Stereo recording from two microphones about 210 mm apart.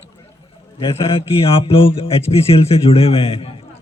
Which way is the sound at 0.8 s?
25° left (ahead or behind).